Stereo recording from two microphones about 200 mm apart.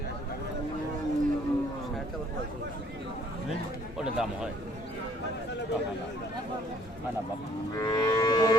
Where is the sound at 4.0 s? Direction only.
5° right (ahead or behind).